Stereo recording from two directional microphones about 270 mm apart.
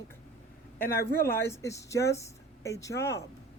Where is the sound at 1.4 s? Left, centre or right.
Centre.